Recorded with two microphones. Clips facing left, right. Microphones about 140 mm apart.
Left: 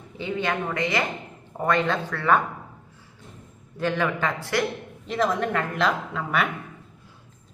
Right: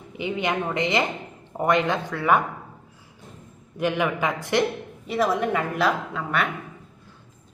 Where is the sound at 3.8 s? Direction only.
15° right (ahead or behind).